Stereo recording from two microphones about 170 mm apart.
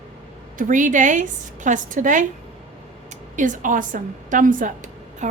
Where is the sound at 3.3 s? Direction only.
50° right (ahead or behind).